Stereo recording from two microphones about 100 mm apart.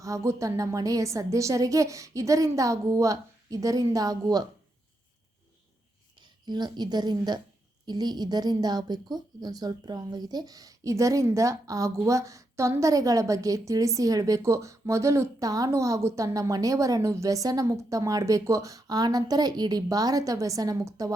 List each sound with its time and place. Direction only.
0.0 s a woman's voice: 30° right (ahead or behind)
6.2 s a woman's voice: 45° right (ahead or behind)